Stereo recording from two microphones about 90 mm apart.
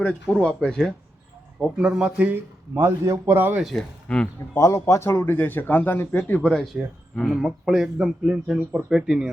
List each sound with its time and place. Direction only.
0.0 s speech: 10° left (ahead or behind)
1.5 s speech: 5° right (ahead or behind)
2.7 s a man's voice: 30° right (ahead or behind)
3.6 s speech: 5° left (ahead or behind)
4.5 s speech: 30° left (ahead or behind)
6.7 s speech: centre (ahead or behind)